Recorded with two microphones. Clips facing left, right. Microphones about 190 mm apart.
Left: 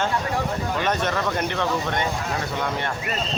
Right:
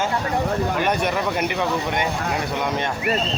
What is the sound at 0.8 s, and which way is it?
Speech, 10° right (ahead or behind).